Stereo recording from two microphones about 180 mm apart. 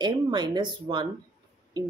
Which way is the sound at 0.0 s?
25° right (ahead or behind).